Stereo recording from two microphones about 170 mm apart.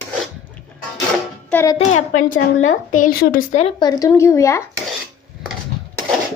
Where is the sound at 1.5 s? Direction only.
15° left (ahead or behind).